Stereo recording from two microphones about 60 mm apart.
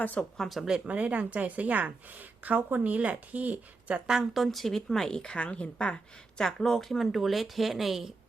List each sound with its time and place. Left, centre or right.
0.0 s speech: left
0.3 s speech: centre
0.9 s a woman's voice: right
3.9 s a woman's voice: centre
6.4 s speech: centre